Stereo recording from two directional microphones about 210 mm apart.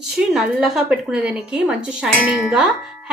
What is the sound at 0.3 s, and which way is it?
Speech, centre (ahead or behind).